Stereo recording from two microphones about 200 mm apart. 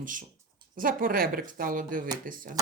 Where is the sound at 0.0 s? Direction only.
40° right (ahead or behind).